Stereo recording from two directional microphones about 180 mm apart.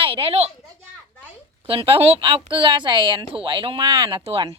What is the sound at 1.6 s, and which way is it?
Speech, 30° right (ahead or behind).